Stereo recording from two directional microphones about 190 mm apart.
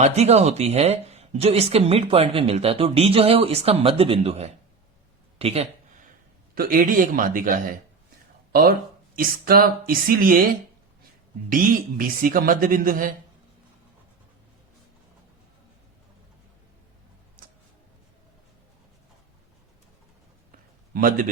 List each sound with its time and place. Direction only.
0.0 s speech: 35° right (ahead or behind)
6.5 s a man's voice: 50° right (ahead or behind)
9.1 s a man's voice: 50° right (ahead or behind)
11.4 s a man's voice: 45° right (ahead or behind)
17.4 s tick-tock: 45° right (ahead or behind)
20.9 s a man's voice: 45° right (ahead or behind)